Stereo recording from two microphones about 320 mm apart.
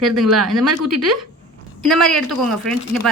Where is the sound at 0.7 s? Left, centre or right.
Right.